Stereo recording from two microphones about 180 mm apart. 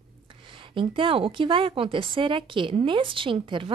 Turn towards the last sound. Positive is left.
turn(degrees=-30)  # may be behind; listen again after turning